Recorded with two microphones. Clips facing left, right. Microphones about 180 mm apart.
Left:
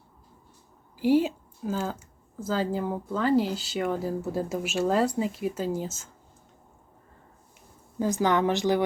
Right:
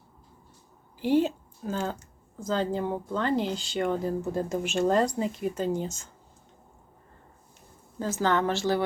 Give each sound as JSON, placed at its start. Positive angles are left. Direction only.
{"t": 0.9, "sound": "speech", "side_deg": 10}
{"t": 7.9, "sound": "a woman's voice", "side_deg": 15}